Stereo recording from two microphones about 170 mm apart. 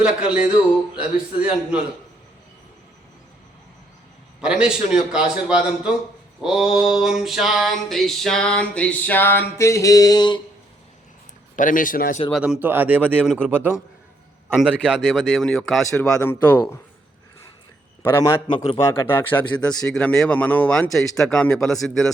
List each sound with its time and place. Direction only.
0.0 s a man's voice: 5° right (ahead or behind)
4.4 s mantra: 5° right (ahead or behind); by 10.4 s 25° left (ahead or behind)
11.5 s a man's voice: 50° left (ahead or behind)
12.3 s a man's voice: 5° right (ahead or behind)
14.6 s mantra: 5° right (ahead or behind)
18.2 s a man's voice: 25° left (ahead or behind)
19.0 s mantra: 10° left (ahead or behind)